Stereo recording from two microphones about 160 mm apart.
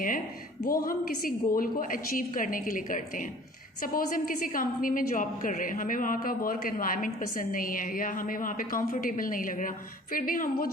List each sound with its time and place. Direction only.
0.6 s a woman's voice: 60° left (ahead or behind)